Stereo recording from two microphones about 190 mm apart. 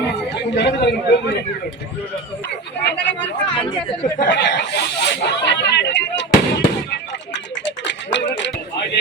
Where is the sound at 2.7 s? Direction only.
70° left (ahead or behind).